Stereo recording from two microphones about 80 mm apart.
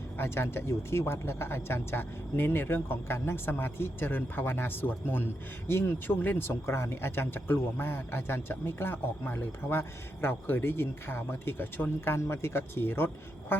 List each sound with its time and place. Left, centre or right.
0.2 s speech: left